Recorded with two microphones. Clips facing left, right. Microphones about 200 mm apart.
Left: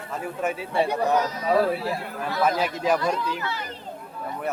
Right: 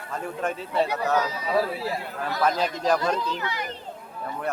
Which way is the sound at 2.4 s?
10° left (ahead or behind).